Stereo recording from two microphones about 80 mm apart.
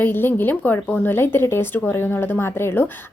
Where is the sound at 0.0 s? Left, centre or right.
Left.